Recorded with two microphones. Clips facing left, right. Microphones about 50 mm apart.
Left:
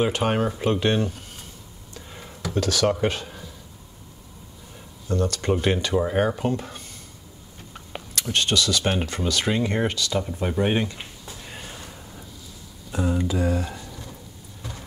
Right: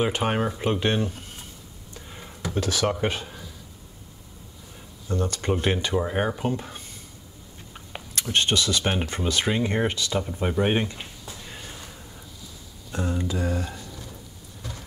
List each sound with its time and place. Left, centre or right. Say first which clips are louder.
0.0 s speech: left 2 dB; centre
2.4 s speech: left 3 dB; centre
5.0 s speech: left 3 dB; centre
8.1 s speech: even; centre
10.1 s speech: even; centre
11.0 s a sound: even; centre
12.9 s a sound: left 4 dB; centre
13.3 s speech: left 3 dB; centre
14.6 s vehicle: left 1 dB; centre